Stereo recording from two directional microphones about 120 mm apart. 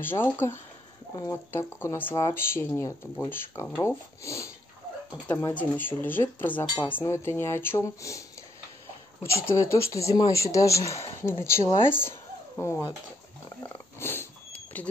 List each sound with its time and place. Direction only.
0.0 s speech: 15° left (ahead or behind)
1.1 s speech: 30° left (ahead or behind)
5.5 s speech: 15° left (ahead or behind)
9.2 s speech: 20° left (ahead or behind)
13.6 s a sound: 20° left (ahead or behind)